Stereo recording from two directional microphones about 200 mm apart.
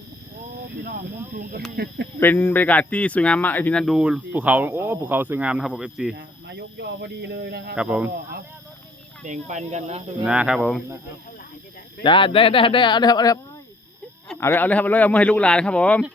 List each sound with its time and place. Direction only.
0.9 s speech: 45° right (ahead or behind)
2.2 s speech: 10° left (ahead or behind)
6.1 s speech: 55° right (ahead or behind)
7.8 s speech: 5° right (ahead or behind)
9.2 s speech: 35° right (ahead or behind)
10.2 s speech: 5° right (ahead or behind)
12.0 s speech: 25° left (ahead or behind); by 16.1 s 5° left (ahead or behind)